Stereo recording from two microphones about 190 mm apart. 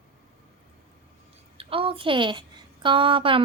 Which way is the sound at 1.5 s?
30° right (ahead or behind).